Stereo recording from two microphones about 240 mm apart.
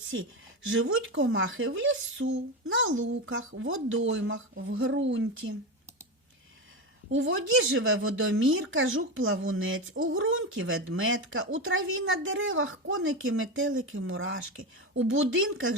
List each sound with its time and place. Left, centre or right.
0.1 s speech: right
7.1 s speech: right